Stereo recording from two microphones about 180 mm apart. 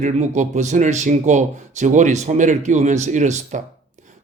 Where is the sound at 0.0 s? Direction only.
40° right (ahead or behind).